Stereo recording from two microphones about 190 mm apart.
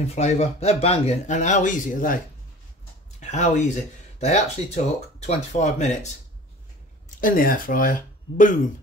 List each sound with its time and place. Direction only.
0.1 s speech: 35° left (ahead or behind)
3.2 s speech: 40° left (ahead or behind)
7.2 s speech: 45° left (ahead or behind)